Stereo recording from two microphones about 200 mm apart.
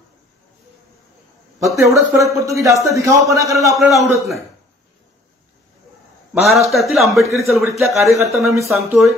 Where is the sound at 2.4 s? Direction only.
15° right (ahead or behind).